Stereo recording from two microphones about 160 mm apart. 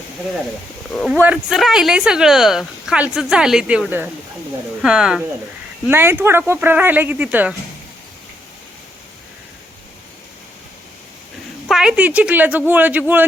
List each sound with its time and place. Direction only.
1.2 s a woman's voice: 5° right (ahead or behind)
11.7 s speech: 5° right (ahead or behind)